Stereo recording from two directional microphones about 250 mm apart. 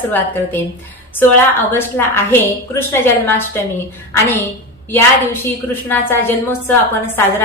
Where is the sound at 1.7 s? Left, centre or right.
Centre.